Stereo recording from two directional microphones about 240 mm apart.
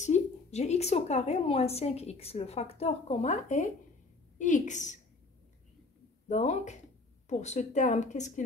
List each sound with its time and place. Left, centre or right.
0.0 s a woman's voice: left
6.2 s a woman's voice: left